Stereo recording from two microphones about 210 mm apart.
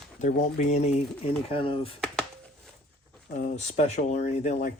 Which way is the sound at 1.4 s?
25° left (ahead or behind).